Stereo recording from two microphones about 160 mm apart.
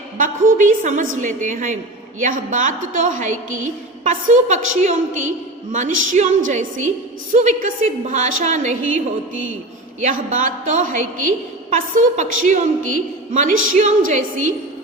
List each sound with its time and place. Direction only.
0.2 s a woman's voice: 55° right (ahead or behind)
10.0 s a woman's voice: 50° right (ahead or behind)